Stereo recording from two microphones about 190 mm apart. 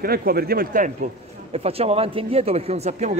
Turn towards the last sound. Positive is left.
turn(degrees=-35)  # may be behind; listen again after turning